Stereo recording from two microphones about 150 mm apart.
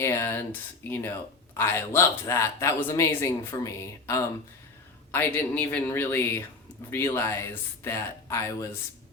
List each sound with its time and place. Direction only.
0.0 s speech: 15° left (ahead or behind)